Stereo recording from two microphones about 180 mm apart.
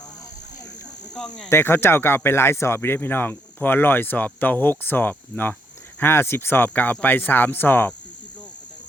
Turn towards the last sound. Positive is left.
turn(degrees=10)  # may be behind; listen again after turning